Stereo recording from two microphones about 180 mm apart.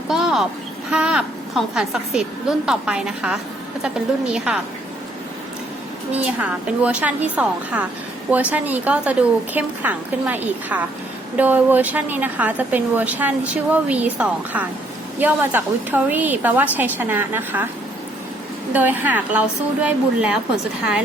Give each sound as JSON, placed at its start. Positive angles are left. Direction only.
{"t": 0.1, "sound": "a sound", "side_deg": -5}
{"t": 0.9, "sound": "a woman's voice", "side_deg": -5}
{"t": 6.1, "sound": "a woman's voice", "side_deg": -5}
{"t": 18.7, "sound": "a woman's voice", "side_deg": -10}